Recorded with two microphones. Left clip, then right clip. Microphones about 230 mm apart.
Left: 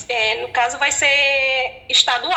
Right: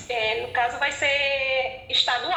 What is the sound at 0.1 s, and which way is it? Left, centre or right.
A woman's voice, left.